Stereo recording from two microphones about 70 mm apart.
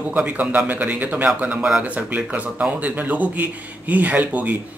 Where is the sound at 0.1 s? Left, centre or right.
Right.